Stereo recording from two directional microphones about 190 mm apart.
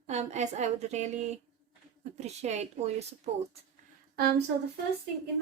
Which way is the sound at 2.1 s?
35° right (ahead or behind).